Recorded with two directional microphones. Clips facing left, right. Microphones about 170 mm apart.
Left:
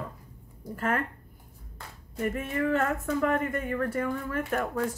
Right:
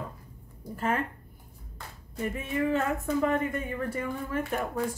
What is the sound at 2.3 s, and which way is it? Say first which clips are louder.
Speech: right 1 dB; 15° right (ahead or behind).